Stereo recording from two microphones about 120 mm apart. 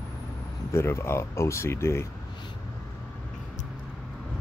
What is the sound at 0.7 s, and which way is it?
Speech, 20° left (ahead or behind).